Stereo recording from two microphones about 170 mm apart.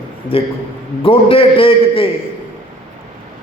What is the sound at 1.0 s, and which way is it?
A man's voice, 35° left (ahead or behind).